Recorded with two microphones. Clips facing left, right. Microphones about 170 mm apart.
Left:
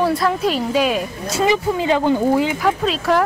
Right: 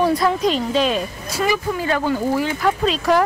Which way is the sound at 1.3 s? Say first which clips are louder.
Left 3 dB; 20° left (ahead or behind).